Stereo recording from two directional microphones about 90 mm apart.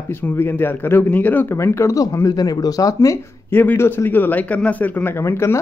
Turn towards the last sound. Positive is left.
turn(degrees=30)  # may be behind; listen again after turning